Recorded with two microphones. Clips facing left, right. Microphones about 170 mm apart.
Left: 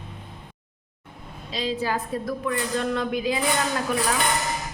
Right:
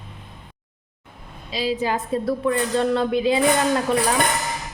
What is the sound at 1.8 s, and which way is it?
A woman's voice, 20° right (ahead or behind).